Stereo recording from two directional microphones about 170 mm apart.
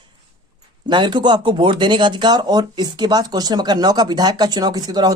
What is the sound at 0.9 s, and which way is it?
Speech, 25° right (ahead or behind).